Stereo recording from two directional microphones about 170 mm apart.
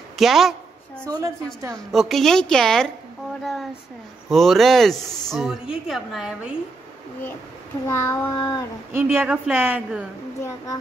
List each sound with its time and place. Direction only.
0.2 s a sound: centre (ahead or behind)
1.0 s a woman's voice: 20° right (ahead or behind)
1.9 s speech: centre (ahead or behind)
4.3 s speech: centre (ahead or behind)
7.9 s child singing: 15° left (ahead or behind)
8.9 s a woman's voice: 10° right (ahead or behind)